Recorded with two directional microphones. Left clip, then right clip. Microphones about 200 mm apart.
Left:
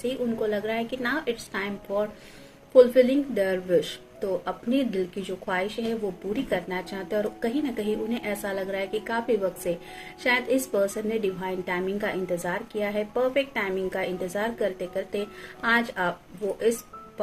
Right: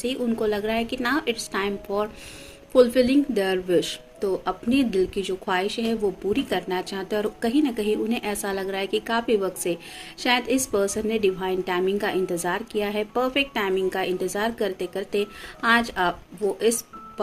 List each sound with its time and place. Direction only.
0.0 s a woman's voice: 50° right (ahead or behind)